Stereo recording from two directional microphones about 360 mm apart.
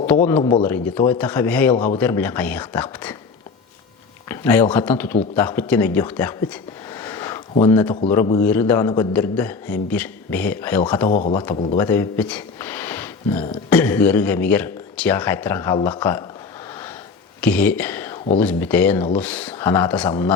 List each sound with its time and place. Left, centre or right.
0.3 s speech: centre
4.3 s speech: centre
11.1 s speech: centre
11.8 s speech: centre
17.4 s speech: centre